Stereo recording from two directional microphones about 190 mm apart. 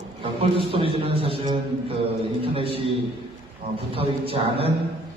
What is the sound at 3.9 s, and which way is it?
Speech, 30° right (ahead or behind).